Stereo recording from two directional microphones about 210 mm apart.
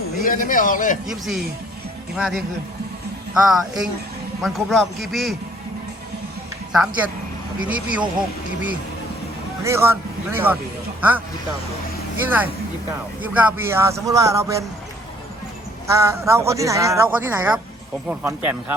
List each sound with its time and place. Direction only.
0.2 s a man's voice: 40° left (ahead or behind)
1.0 s a man's voice: centre (ahead or behind)
6.7 s a man's voice: 5° right (ahead or behind)
9.6 s a man's voice: 10° right (ahead or behind)
12.2 s a man's voice: 10° right (ahead or behind)
15.9 s a man's voice: 15° right (ahead or behind)